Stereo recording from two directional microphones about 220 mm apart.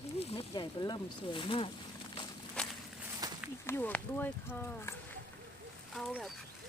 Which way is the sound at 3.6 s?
10° left (ahead or behind).